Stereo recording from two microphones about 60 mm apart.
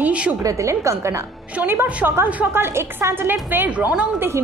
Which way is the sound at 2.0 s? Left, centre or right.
Right.